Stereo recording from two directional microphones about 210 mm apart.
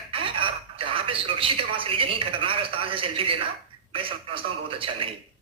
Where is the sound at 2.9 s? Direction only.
25° right (ahead or behind).